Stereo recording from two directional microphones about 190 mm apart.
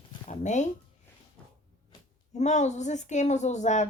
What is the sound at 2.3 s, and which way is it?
Speech, 40° left (ahead or behind).